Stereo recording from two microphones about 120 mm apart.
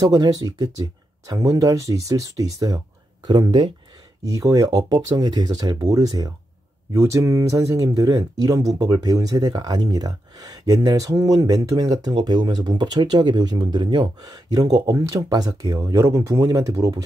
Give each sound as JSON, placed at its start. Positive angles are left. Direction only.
{"t": 0.1, "sound": "speech", "side_deg": -30}
{"t": 3.3, "sound": "speech", "side_deg": -40}
{"t": 4.2, "sound": "speech", "side_deg": -25}